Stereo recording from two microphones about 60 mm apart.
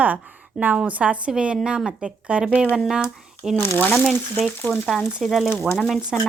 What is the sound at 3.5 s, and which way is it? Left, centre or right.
Speech, left.